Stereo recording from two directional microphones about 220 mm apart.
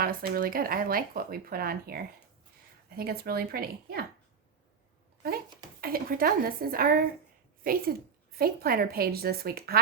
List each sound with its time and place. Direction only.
0.0 s a woman's voice: 40° right (ahead or behind)
5.8 s a woman's voice: 40° right (ahead or behind)